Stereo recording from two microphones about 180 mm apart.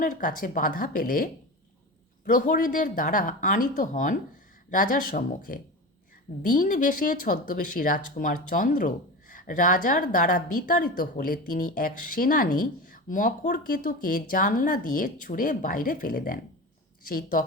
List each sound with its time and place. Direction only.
0.0 s speech: 45° left (ahead or behind)